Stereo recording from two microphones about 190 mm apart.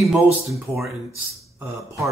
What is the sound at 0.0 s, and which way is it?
Speech, centre (ahead or behind).